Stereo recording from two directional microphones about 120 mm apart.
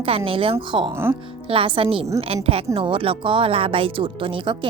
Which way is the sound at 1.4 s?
45° right (ahead or behind).